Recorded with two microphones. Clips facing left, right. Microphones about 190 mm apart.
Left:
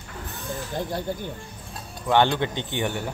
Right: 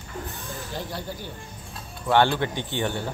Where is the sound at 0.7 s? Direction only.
50° left (ahead or behind).